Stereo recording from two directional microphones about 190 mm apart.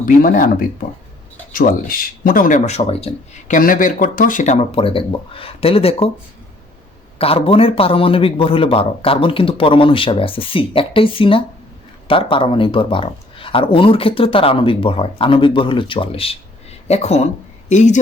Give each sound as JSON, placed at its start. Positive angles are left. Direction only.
{"t": 0.0, "sound": "speech", "side_deg": 45}
{"t": 3.5, "sound": "speech", "side_deg": 45}
{"t": 7.2, "sound": "speech", "side_deg": 30}